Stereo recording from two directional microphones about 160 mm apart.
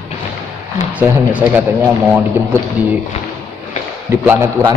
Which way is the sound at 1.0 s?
10° right (ahead or behind).